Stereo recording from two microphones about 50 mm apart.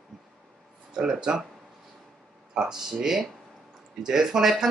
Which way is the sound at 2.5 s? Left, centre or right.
Centre.